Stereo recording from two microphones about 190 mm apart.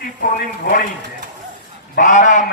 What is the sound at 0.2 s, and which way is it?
Speech, 45° left (ahead or behind).